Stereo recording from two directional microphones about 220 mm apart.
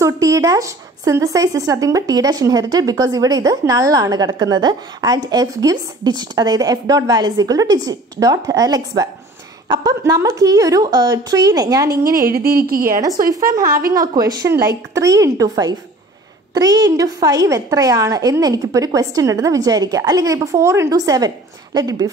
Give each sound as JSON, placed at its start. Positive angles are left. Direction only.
{"t": 0.0, "sound": "speech", "side_deg": -15}
{"t": 12.3, "sound": "speech", "side_deg": -45}
{"t": 14.1, "sound": "speech", "side_deg": -15}